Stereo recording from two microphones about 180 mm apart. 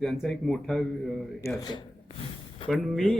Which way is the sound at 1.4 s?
20° left (ahead or behind).